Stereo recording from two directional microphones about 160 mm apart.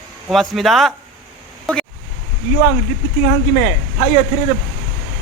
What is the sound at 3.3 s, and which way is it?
Speech, 40° left (ahead or behind).